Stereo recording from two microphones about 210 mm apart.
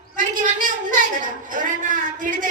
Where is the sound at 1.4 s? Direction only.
40° right (ahead or behind).